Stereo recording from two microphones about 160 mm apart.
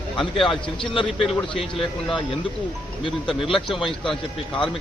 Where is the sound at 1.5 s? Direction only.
30° left (ahead or behind).